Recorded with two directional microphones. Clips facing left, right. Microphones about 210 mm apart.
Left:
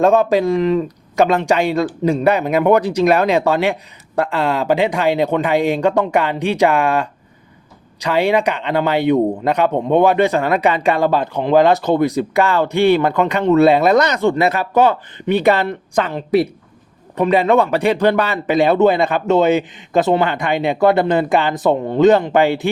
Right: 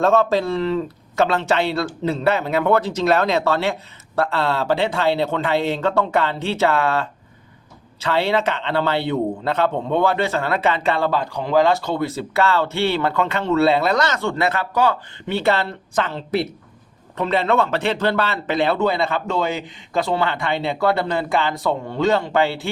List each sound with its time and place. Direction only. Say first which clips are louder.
0.0 s a man's voice: left 4 dB; 15° left (ahead or behind)